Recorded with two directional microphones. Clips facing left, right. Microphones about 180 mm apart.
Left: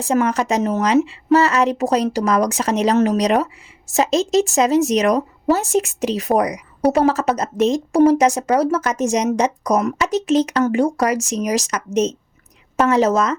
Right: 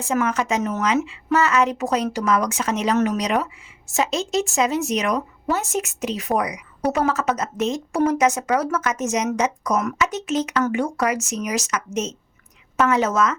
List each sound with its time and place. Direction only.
0.0 s speech: 35° left (ahead or behind)